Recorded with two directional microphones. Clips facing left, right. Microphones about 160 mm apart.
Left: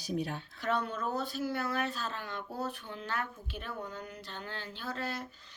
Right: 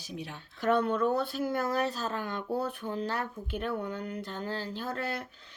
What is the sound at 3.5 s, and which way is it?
Speech, 60° right (ahead or behind).